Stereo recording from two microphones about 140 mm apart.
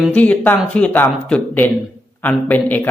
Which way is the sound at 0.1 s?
10° left (ahead or behind).